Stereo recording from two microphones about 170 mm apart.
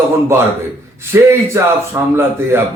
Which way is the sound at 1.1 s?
15° right (ahead or behind).